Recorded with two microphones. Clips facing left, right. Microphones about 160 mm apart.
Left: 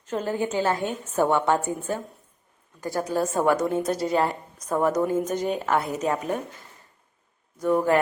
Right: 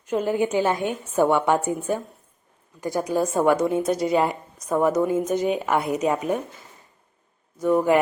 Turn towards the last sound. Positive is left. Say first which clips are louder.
# right 2 dB
turn(degrees=-10)  # may be behind; listen again after turning